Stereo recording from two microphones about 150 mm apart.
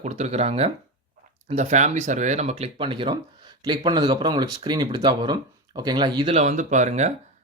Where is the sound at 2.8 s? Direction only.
35° right (ahead or behind).